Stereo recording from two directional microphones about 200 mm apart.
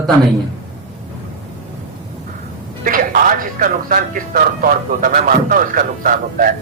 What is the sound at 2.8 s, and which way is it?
Speech, 45° right (ahead or behind).